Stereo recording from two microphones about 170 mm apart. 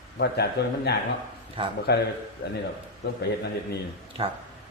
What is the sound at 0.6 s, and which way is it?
Speech, 85° left.